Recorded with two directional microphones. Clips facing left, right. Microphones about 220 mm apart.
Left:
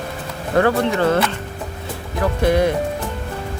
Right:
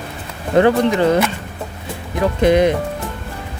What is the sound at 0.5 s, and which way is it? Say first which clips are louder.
Speech: right 4 dB; 20° right (ahead or behind).